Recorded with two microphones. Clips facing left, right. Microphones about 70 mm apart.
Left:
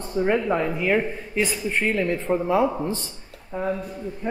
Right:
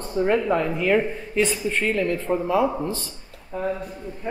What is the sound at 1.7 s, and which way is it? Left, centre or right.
Speech, centre.